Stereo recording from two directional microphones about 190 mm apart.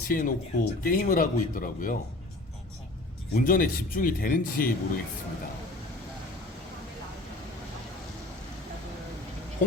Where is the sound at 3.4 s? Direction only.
45° left (ahead or behind).